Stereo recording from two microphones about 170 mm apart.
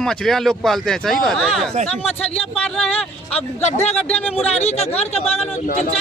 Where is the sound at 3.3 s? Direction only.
40° left (ahead or behind).